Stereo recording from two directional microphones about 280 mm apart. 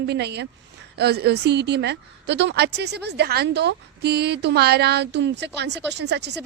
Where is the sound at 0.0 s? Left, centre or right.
Right.